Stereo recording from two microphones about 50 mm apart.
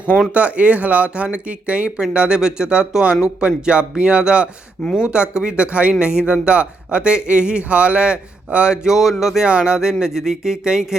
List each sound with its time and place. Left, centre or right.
0.3 s speech: right
4.8 s speech: centre
5.1 s speech: centre
9.0 s a sound: centre
9.5 s speech: right